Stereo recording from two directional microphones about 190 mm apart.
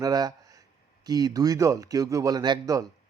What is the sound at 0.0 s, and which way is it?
Speech, 20° right (ahead or behind).